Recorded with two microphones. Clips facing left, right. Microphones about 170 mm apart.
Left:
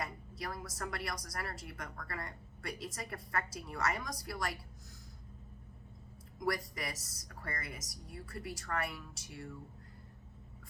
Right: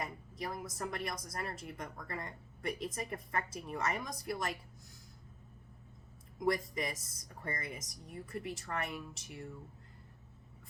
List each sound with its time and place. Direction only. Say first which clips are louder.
0.0 s a woman's voice: right 1 dB; 20° right (ahead or behind)
6.4 s a woman's voice: right 3 dB; 20° right (ahead or behind)